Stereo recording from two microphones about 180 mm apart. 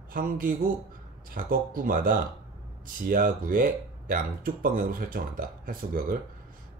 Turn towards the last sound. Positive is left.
turn(degrees=-50)  # may be behind; listen again after turning